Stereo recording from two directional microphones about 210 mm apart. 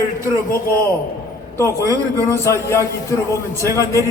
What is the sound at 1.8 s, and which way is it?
Speech, 15° right (ahead or behind).